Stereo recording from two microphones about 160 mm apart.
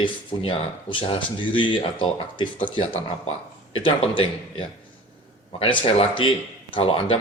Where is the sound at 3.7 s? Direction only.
35° left (ahead or behind).